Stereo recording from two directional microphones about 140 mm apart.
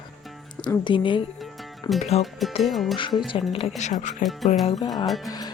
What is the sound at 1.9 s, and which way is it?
Speech, 50° left (ahead or behind).